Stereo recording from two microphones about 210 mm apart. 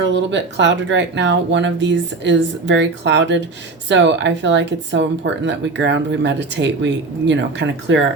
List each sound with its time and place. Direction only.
0.0 s speech: 60° right (ahead or behind)